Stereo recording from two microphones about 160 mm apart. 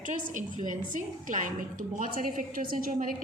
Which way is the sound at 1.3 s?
55° right (ahead or behind).